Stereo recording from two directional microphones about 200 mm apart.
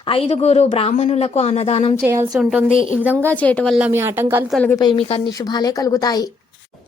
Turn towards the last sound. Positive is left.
turn(degrees=20)  # may be behind; listen again after turning